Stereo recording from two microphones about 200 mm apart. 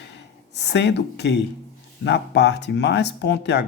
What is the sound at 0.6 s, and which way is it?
Speech, 60° left (ahead or behind).